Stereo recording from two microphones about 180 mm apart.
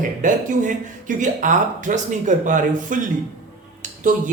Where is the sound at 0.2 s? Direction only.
45° right (ahead or behind).